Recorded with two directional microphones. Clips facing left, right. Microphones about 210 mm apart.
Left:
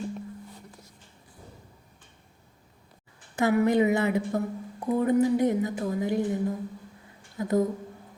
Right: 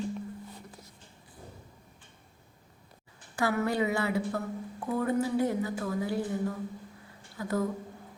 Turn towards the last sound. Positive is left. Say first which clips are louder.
# left 6 dB
turn(degrees=20)  # may be behind; listen again after turning